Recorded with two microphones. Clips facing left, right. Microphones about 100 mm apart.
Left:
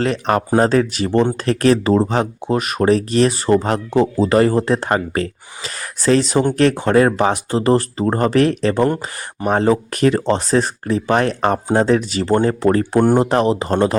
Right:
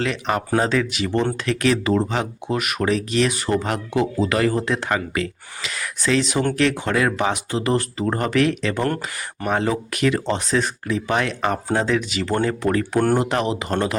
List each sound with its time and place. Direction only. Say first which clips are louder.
0.0 s speech: left 5 dB; 40° left (ahead or behind)